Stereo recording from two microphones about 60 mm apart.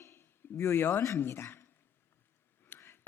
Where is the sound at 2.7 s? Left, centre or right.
Left.